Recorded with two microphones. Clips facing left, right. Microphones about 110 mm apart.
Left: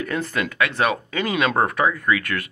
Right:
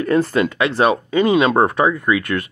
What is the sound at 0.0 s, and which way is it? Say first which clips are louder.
Speech: right 9 dB; 35° right (ahead or behind).